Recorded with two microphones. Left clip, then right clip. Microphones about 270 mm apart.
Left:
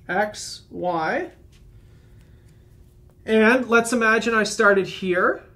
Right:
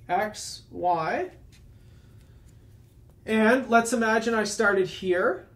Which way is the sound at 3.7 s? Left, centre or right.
Left.